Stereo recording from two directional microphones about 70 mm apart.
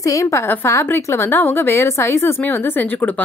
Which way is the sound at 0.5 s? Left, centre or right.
Left.